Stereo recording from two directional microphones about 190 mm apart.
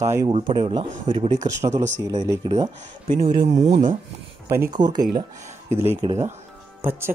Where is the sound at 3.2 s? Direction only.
50° right (ahead or behind).